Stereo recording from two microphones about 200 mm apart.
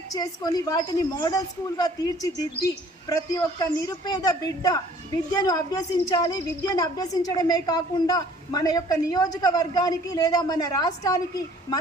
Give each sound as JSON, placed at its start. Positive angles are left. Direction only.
{"t": 0.1, "sound": "a woman's voice", "side_deg": 20}